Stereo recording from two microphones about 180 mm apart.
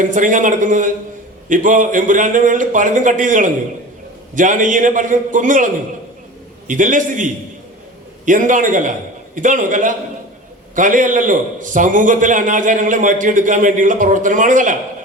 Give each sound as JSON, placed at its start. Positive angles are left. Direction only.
{"t": 0.0, "sound": "a man's voice", "side_deg": -45}